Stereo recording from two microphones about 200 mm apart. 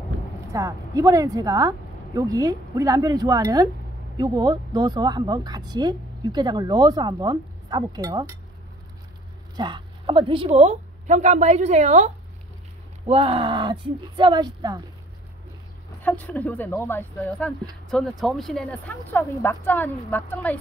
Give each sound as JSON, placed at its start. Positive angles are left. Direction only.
{"t": 0.5, "sound": "speech", "side_deg": -15}
{"t": 9.6, "sound": "a woman's voice", "side_deg": -25}
{"t": 16.0, "sound": "speech", "side_deg": 10}